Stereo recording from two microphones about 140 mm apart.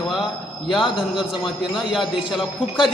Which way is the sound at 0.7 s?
5° right (ahead or behind).